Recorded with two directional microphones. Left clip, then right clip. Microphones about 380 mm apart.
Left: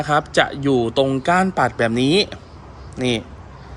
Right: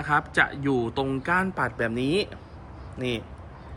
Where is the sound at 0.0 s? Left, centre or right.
Centre.